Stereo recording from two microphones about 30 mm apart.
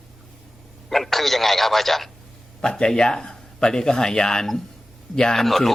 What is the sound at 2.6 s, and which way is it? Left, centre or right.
A man's voice, left.